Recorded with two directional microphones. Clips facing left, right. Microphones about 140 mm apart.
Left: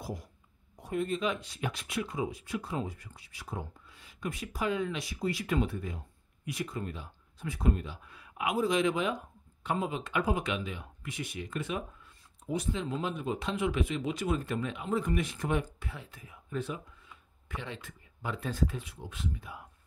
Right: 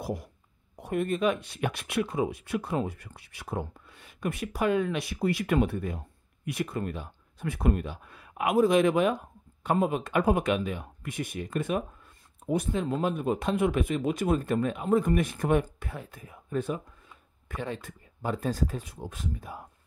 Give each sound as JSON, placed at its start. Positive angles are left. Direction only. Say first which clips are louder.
{"t": 0.0, "sound": "speech", "louder": "right 6 dB", "side_deg": -65}